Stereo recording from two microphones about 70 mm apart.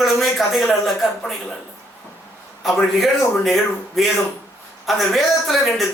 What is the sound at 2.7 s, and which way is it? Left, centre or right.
Speech, centre.